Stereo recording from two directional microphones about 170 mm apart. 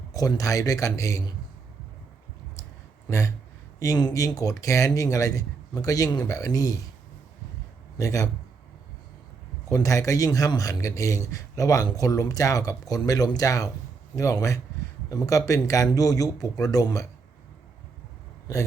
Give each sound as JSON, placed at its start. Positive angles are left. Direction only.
{"t": 0.1, "sound": "a man's voice", "side_deg": 20}
{"t": 3.1, "sound": "a sound", "side_deg": 20}
{"t": 3.8, "sound": "a man's voice", "side_deg": 20}
{"t": 7.9, "sound": "a man's voice", "side_deg": 20}
{"t": 9.6, "sound": "a man's voice", "side_deg": 20}